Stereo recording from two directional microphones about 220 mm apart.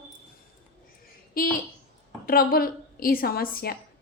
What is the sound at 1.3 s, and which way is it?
A woman's voice, 40° left (ahead or behind).